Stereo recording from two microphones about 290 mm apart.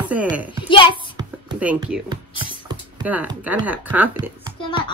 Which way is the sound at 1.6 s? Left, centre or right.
Centre.